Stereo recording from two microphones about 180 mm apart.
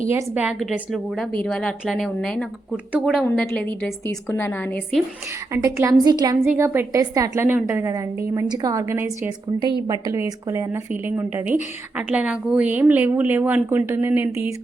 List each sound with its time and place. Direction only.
0.1 s a woman's voice: 10° right (ahead or behind); by 5.0 s 5° left (ahead or behind)
5.5 s a woman's voice: 15° right (ahead or behind)